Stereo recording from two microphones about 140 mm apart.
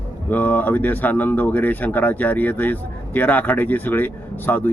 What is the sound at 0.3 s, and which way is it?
Speech, 15° left (ahead or behind).